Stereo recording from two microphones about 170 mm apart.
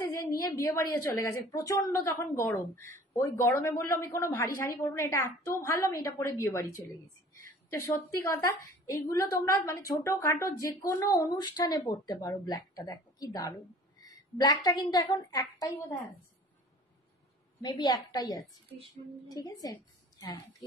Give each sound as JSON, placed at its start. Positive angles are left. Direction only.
{"t": 0.3, "sound": "a woman's voice", "side_deg": 20}
{"t": 7.7, "sound": "speech", "side_deg": 15}
{"t": 17.6, "sound": "a woman's voice", "side_deg": 25}